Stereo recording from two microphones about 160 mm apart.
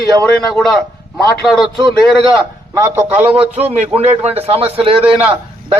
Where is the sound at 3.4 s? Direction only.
40° right (ahead or behind).